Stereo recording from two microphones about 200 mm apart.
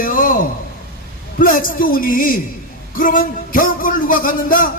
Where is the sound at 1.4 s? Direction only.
45° left (ahead or behind).